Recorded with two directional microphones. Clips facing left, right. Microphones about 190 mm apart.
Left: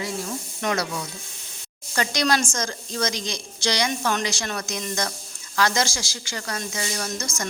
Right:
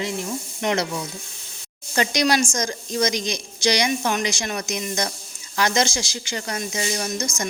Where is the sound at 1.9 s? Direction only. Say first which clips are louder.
Right 3 dB; 20° right (ahead or behind).